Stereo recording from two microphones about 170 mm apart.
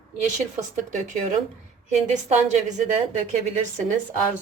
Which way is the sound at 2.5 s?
45° right (ahead or behind).